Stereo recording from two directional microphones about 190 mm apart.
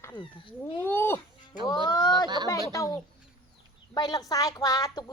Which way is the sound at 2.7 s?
15° left (ahead or behind).